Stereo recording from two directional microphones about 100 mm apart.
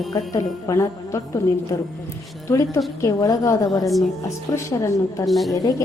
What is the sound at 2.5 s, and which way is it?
A woman's voice, 30° left (ahead or behind).